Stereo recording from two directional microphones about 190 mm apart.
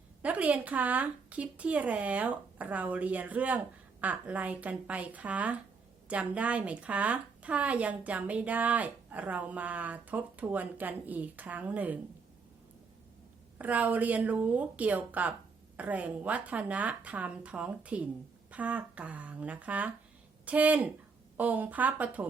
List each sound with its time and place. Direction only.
0.2 s a woman's voice: 10° right (ahead or behind)
13.6 s a woman's voice: 10° right (ahead or behind)